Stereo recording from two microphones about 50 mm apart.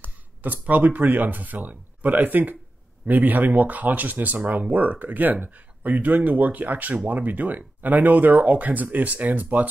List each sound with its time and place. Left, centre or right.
0.4 s speech: right